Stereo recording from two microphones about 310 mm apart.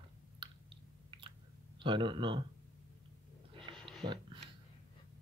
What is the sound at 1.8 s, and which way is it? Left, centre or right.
Speech, centre.